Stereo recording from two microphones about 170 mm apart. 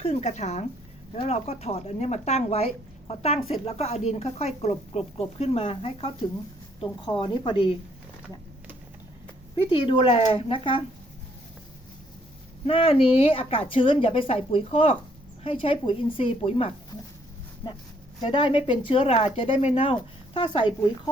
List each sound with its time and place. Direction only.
0.0 s a woman's voice: 40° left (ahead or behind)
9.6 s a woman's voice: 30° left (ahead or behind)
12.6 s a woman's voice: 35° left (ahead or behind)
18.2 s speech: 25° left (ahead or behind)